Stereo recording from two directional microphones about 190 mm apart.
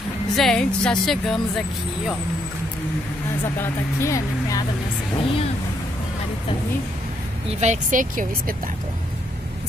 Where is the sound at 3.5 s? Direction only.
15° left (ahead or behind).